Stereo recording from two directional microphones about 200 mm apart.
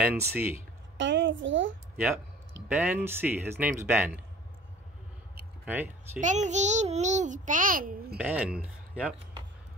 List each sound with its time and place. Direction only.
0.0 s speech: 10° right (ahead or behind)
0.9 s a child's voice: 65° right (ahead or behind)
2.7 s speech: 10° right (ahead or behind)
5.7 s speech: 10° right (ahead or behind)
6.2 s a child's voice: 35° right (ahead or behind)
8.2 s speech: 5° right (ahead or behind)